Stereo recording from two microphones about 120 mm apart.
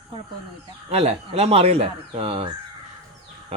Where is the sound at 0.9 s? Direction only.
60° right (ahead or behind).